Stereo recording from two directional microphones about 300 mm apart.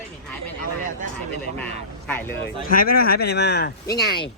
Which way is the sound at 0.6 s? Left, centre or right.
Right.